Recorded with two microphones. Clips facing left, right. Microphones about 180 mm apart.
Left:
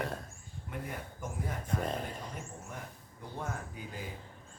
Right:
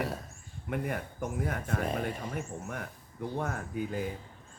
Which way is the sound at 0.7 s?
65° right (ahead or behind).